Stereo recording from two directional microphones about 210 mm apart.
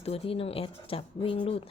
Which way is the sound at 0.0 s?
30° left (ahead or behind).